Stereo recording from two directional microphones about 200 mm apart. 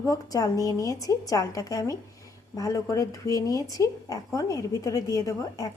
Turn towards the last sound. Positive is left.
turn(degrees=15)  # may be behind; listen again after turning